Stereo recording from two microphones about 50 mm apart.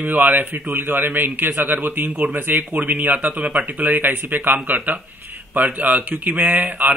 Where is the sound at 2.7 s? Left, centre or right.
Right.